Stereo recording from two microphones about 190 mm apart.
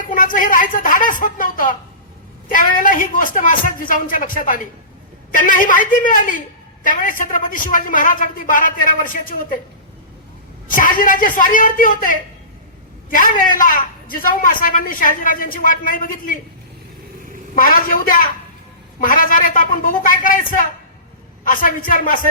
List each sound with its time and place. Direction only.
0.0 s a woman's voice: 45° left (ahead or behind)
10.8 s a woman's voice: 45° left (ahead or behind)
17.5 s a woman's voice: 50° left (ahead or behind)